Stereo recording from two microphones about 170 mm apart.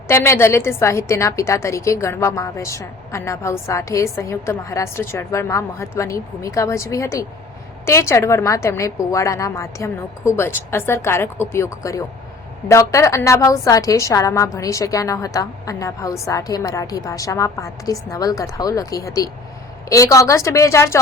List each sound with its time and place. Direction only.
0.1 s a woman's voice: 15° left (ahead or behind)